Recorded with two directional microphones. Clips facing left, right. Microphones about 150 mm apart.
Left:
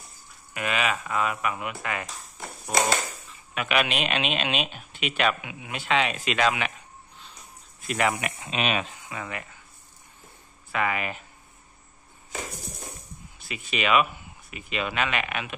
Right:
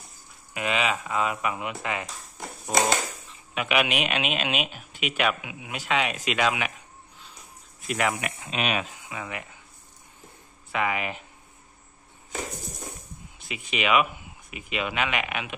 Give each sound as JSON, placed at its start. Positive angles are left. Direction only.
{"t": 0.6, "sound": "speech", "side_deg": -20}
{"t": 2.6, "sound": "a sound", "side_deg": -20}
{"t": 3.5, "sound": "speech", "side_deg": -15}
{"t": 8.0, "sound": "speech", "side_deg": 0}
{"t": 10.7, "sound": "speech", "side_deg": -15}
{"t": 13.4, "sound": "speech", "side_deg": -20}